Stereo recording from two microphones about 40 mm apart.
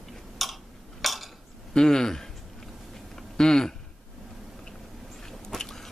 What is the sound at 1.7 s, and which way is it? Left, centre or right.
Speech, centre.